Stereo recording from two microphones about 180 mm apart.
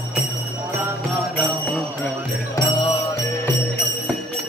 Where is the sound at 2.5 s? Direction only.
20° left (ahead or behind).